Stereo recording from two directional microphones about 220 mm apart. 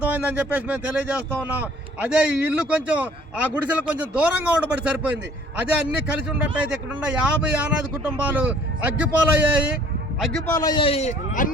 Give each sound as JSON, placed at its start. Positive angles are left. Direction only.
{"t": 0.0, "sound": "speech", "side_deg": -5}
{"t": 10.5, "sound": "a man's voice", "side_deg": 15}